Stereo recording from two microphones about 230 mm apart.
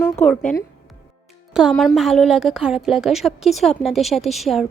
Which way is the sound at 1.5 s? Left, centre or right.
Centre.